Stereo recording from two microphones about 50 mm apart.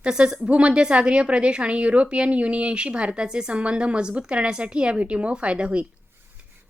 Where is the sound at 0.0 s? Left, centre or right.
Centre.